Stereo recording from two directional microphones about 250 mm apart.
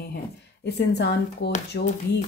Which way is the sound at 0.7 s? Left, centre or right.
Left.